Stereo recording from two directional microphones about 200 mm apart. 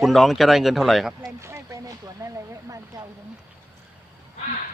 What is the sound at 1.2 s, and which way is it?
Speech, 15° right (ahead or behind).